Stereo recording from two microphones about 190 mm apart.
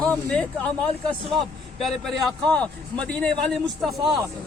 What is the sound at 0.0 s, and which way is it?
Speech, 5° left (ahead or behind).